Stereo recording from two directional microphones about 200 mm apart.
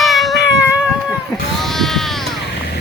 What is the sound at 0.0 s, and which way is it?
Baby cry, centre (ahead or behind).